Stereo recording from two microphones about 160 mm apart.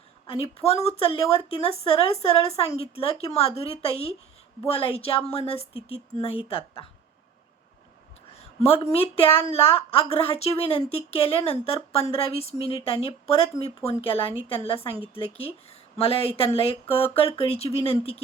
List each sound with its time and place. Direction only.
0.3 s a woman's voice: 40° left (ahead or behind)
8.3 s a woman's voice: 40° left (ahead or behind)